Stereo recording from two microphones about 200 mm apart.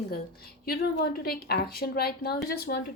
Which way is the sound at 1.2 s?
50° left (ahead or behind).